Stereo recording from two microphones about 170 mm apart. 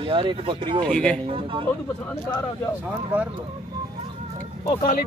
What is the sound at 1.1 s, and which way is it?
Speech, 30° right (ahead or behind).